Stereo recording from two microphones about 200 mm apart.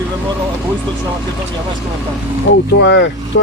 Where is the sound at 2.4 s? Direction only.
65° left (ahead or behind).